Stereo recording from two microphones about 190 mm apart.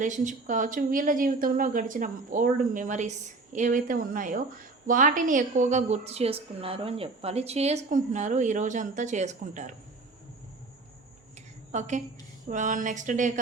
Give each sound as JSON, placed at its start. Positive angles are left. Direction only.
{"t": 0.0, "sound": "a woman's voice", "side_deg": -40}
{"t": 11.7, "sound": "a woman's voice", "side_deg": -40}